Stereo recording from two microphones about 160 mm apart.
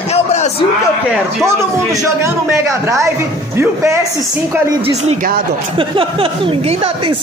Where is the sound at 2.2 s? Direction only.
20° right (ahead or behind).